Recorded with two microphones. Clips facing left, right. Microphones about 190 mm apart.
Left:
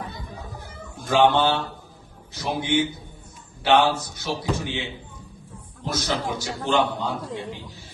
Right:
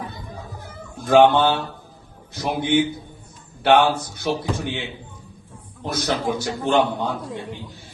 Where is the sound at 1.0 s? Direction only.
55° right (ahead or behind).